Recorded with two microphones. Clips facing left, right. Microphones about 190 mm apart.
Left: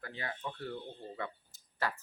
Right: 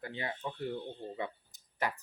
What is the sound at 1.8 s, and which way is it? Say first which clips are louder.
Speech: right 1 dB; 15° right (ahead or behind).